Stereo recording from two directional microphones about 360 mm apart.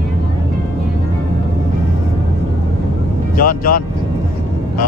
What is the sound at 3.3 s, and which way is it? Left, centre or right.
Vehicle, left.